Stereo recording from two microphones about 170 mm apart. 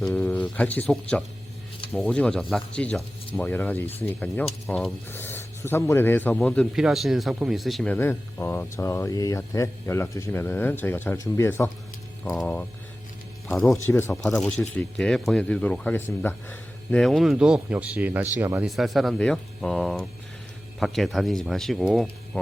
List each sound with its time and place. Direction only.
0.0 s speech: 10° left (ahead or behind)
12.2 s speech: centre (ahead or behind)
13.8 s speech: 15° left (ahead or behind)
14.2 s speech: 5° left (ahead or behind); by 18.6 s 15° right (ahead or behind)
18.6 s speech: centre (ahead or behind)